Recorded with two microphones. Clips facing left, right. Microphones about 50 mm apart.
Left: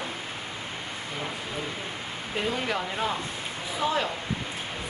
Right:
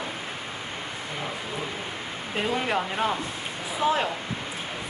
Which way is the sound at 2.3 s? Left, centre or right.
Centre.